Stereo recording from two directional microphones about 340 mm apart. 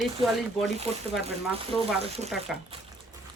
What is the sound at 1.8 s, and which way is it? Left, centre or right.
Speech, centre.